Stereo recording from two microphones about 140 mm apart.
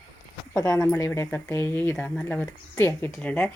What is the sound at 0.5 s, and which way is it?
Speech, 20° left (ahead or behind).